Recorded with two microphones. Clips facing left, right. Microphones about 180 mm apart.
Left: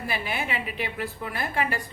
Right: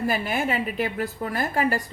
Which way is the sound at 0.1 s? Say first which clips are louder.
Right 5 dB; 45° right (ahead or behind).